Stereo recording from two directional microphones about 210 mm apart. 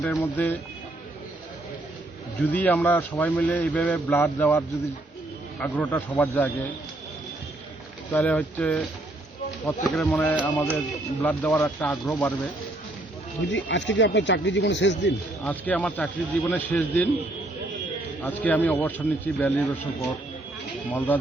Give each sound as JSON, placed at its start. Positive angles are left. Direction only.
{"t": 0.2, "sound": "a man's voice", "side_deg": 10}
{"t": 2.4, "sound": "a man's voice", "side_deg": 10}
{"t": 8.1, "sound": "a man's voice", "side_deg": 5}
{"t": 9.8, "sound": "a man's voice", "side_deg": 0}
{"t": 13.5, "sound": "speech", "side_deg": 60}
{"t": 15.4, "sound": "a man's voice", "side_deg": 5}
{"t": 18.2, "sound": "a man's voice", "side_deg": 10}